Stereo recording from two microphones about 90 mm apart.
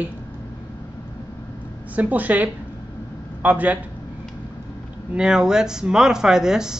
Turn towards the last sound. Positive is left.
turn(degrees=-5)  # may be behind; listen again after turning